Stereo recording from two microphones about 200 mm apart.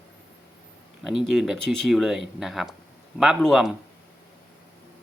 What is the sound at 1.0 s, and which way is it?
Speech, centre (ahead or behind).